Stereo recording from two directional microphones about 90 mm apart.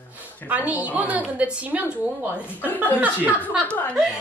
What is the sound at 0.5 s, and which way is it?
A woman's voice, 15° right (ahead or behind).